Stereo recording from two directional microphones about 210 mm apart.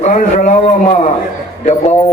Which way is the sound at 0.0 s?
35° left (ahead or behind).